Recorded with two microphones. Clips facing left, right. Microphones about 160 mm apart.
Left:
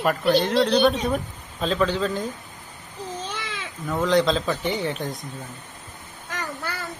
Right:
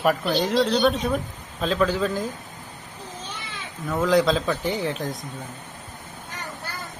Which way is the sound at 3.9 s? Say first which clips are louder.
Right 1 dB; centre (ahead or behind).